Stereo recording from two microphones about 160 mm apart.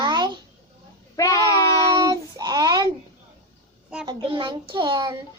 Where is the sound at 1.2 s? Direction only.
20° left (ahead or behind).